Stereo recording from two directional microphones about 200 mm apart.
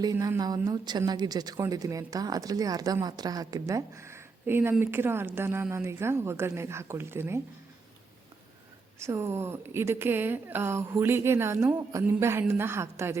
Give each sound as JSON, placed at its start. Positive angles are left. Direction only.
{"t": 0.0, "sound": "a woman's voice", "side_deg": -20}
{"t": 9.0, "sound": "a woman's voice", "side_deg": -15}